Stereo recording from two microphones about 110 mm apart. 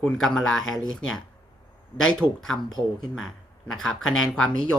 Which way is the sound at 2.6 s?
40° left (ahead or behind).